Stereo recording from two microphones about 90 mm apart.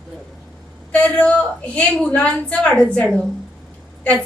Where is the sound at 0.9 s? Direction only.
15° left (ahead or behind).